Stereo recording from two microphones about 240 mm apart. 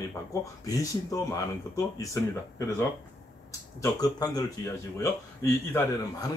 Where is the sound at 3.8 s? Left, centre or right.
Centre.